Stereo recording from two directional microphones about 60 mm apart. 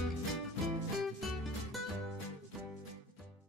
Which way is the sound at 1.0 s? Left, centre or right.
Centre.